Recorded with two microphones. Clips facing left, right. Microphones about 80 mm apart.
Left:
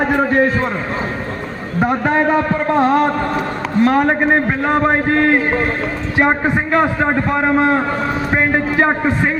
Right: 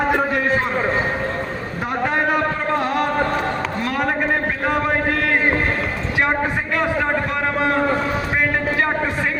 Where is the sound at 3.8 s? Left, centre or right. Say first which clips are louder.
Left 8 dB; left.